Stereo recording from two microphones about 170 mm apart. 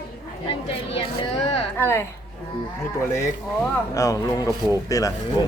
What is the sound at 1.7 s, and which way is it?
Speech, 15° left (ahead or behind).